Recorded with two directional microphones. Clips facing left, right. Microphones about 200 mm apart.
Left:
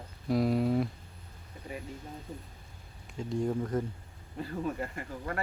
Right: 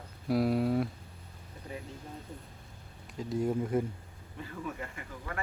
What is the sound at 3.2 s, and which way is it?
Speech, 5° right (ahead or behind).